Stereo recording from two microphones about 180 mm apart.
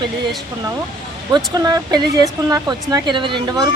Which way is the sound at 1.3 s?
20° right (ahead or behind).